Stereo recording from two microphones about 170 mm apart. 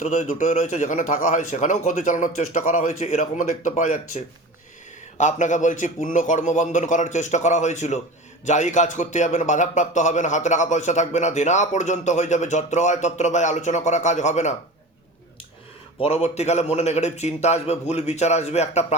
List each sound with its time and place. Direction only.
0.0 s a man's voice: 45° left (ahead or behind)
16.0 s a man's voice: 35° left (ahead or behind)